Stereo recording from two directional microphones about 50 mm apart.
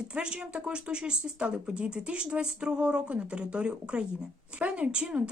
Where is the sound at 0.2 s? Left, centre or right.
Right.